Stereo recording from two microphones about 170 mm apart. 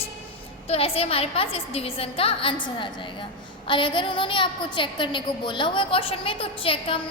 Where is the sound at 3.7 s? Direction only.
30° left (ahead or behind).